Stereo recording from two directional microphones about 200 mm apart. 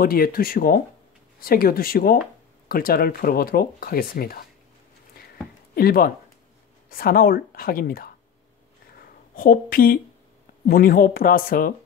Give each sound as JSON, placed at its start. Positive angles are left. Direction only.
{"t": 0.0, "sound": "speech", "side_deg": 45}
{"t": 5.8, "sound": "speech", "side_deg": 50}
{"t": 8.9, "sound": "a sound", "side_deg": 45}
{"t": 10.7, "sound": "speech", "side_deg": 45}